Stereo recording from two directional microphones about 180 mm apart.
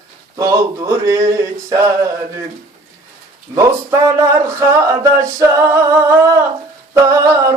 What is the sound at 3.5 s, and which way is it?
Male singing, 15° right (ahead or behind).